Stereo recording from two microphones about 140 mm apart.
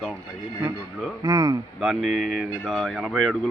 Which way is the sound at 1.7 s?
5° right (ahead or behind).